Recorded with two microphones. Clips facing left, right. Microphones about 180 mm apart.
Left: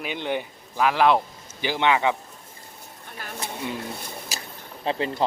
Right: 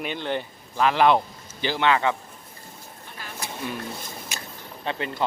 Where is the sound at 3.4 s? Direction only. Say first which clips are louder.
Left 1 dB; 20° left (ahead or behind).